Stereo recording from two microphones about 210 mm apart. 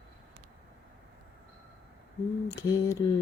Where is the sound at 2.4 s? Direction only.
15° left (ahead or behind).